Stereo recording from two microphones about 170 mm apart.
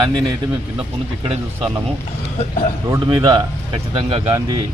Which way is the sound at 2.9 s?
25° right (ahead or behind).